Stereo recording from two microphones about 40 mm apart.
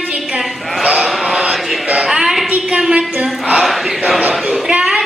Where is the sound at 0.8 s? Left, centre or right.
Centre.